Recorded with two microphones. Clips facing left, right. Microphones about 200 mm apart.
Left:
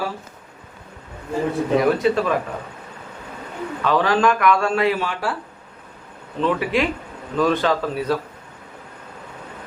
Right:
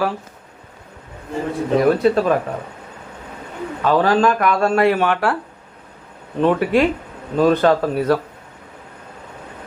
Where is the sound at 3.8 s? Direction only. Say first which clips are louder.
Right 3 dB; 40° right (ahead or behind); by 5.4 s 60° right (ahead or behind).